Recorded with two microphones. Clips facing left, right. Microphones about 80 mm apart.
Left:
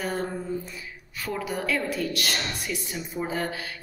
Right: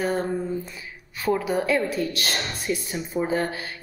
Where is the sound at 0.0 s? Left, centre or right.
Right.